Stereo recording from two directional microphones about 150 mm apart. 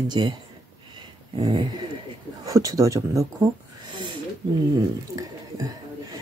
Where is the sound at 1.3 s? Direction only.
30° right (ahead or behind).